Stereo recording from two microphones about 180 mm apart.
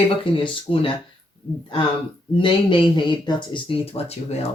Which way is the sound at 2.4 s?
25° left (ahead or behind).